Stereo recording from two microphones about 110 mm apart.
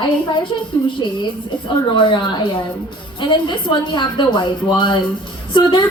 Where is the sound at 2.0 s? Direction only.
45° left (ahead or behind).